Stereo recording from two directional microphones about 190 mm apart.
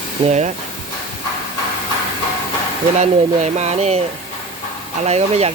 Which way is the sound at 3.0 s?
35° right (ahead or behind).